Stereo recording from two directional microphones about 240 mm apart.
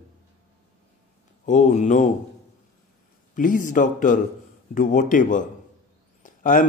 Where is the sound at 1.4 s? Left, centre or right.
Left.